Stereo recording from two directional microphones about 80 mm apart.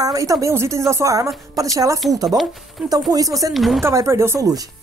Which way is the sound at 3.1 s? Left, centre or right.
Right.